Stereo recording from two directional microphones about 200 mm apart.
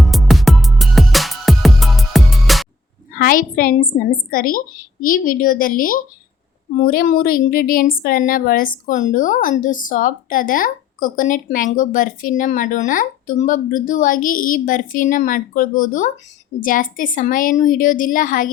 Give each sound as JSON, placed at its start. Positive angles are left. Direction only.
{"t": 0.0, "sound": "music", "side_deg": 0}
{"t": 3.2, "sound": "a woman's voice", "side_deg": 45}